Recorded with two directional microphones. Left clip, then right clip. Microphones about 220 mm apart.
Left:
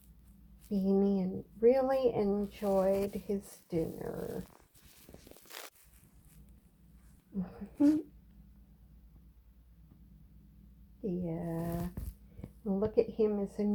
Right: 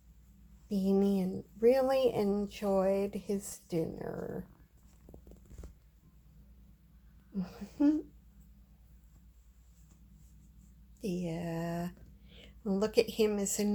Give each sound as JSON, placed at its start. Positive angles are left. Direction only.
{"t": 0.7, "sound": "speech", "side_deg": -15}
{"t": 7.3, "sound": "a sound", "side_deg": -15}
{"t": 11.0, "sound": "speech", "side_deg": -10}
{"t": 12.9, "sound": "a woman's voice", "side_deg": -20}